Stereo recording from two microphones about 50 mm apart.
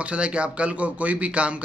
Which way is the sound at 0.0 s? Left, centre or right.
Right.